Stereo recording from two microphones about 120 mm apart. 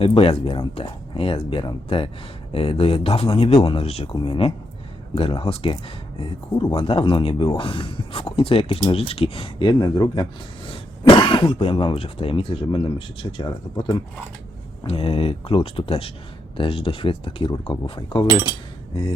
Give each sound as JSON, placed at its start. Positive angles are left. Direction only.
{"t": 0.0, "sound": "speech", "side_deg": 50}
{"t": 6.7, "sound": "speech", "side_deg": 50}
{"t": 14.8, "sound": "speech", "side_deg": 55}
{"t": 18.3, "sound": "speech", "side_deg": -15}